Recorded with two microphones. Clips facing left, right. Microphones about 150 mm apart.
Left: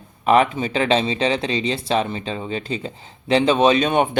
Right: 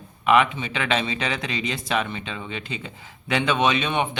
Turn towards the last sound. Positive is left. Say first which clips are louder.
# left 6 dB
turn(degrees=40)  # may be behind; listen again after turning